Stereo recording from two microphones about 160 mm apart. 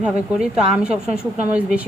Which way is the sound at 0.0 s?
5° right (ahead or behind).